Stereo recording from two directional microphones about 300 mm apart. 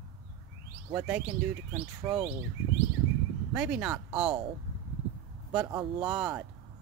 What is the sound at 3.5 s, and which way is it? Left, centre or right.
Speech, centre.